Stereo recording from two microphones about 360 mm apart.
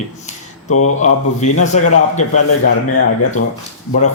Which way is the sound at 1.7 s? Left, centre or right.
Left.